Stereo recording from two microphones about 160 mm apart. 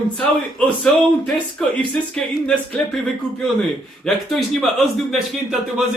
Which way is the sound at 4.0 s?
Centre (ahead or behind).